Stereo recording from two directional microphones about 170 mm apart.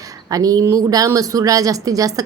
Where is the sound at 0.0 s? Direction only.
20° right (ahead or behind).